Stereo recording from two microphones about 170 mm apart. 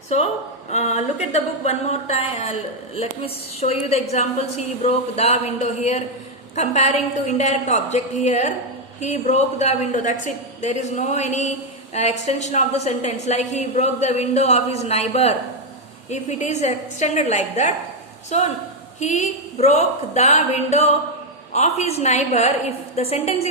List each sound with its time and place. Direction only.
0.7 s a woman's voice: 40° left (ahead or behind)